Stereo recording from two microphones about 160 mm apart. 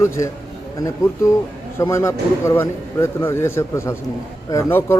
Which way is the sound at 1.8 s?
15° left (ahead or behind).